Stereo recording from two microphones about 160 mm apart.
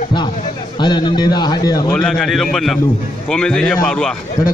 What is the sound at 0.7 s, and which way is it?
A man's voice, 25° left (ahead or behind).